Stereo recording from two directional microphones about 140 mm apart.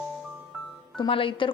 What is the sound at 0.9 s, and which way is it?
Speech, 40° left (ahead or behind).